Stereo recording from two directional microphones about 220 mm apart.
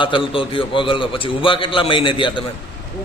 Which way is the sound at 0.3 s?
25° left (ahead or behind).